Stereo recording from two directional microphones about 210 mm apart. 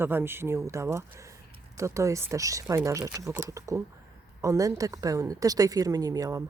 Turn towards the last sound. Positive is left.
turn(degrees=-15)  # may be behind; listen again after turning